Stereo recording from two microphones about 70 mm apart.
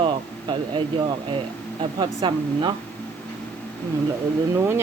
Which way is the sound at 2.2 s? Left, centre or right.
Right.